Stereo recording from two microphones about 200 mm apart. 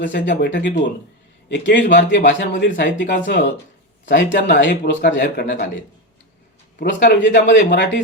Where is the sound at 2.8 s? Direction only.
40° left (ahead or behind).